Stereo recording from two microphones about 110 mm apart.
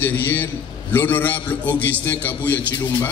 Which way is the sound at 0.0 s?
15° left (ahead or behind).